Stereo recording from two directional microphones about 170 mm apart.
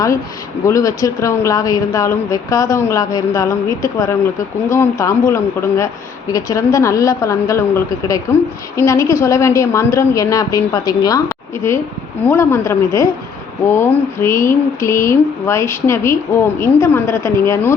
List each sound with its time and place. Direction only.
0.6 s a woman's voice: 20° left (ahead or behind)